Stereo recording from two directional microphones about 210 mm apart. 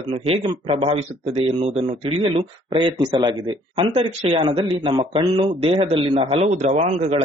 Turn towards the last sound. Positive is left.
turn(degrees=-30)  # may be behind; listen again after turning